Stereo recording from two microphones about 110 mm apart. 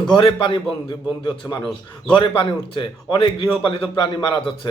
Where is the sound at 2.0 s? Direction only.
45° left (ahead or behind).